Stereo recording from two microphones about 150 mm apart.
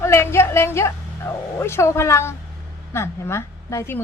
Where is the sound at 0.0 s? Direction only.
15° left (ahead or behind).